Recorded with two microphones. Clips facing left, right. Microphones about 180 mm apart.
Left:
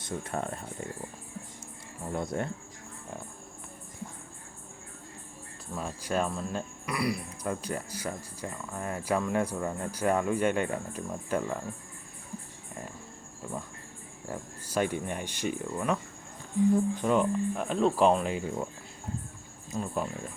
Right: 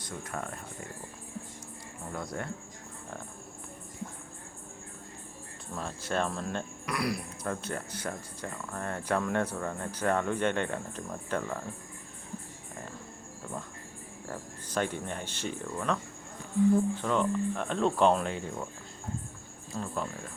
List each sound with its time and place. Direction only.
0.0 s speech: 25° left (ahead or behind)
2.1 s speech: 25° left (ahead or behind)
5.7 s speech: 10° left (ahead or behind)
14.3 s speech: 10° left (ahead or behind)
19.7 s speech: 15° left (ahead or behind)